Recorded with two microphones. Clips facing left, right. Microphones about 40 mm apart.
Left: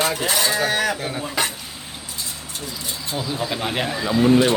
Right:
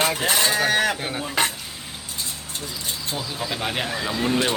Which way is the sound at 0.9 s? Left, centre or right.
Right.